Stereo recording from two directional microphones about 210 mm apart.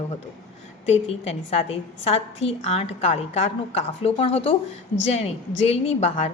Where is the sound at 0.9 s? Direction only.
30° left (ahead or behind).